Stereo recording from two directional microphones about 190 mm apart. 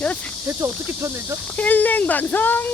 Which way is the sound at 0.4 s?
15° right (ahead or behind).